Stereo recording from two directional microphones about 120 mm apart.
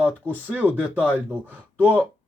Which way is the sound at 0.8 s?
10° right (ahead or behind).